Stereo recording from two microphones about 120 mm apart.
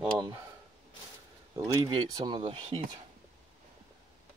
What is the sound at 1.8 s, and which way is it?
Speech, 40° right (ahead or behind).